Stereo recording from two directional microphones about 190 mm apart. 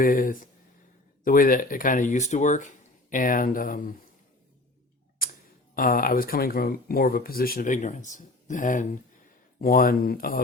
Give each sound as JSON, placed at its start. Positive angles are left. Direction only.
{"t": 0.0, "sound": "speech", "side_deg": 45}
{"t": 5.2, "sound": "tick-tock", "side_deg": 50}
{"t": 5.7, "sound": "speech", "side_deg": 50}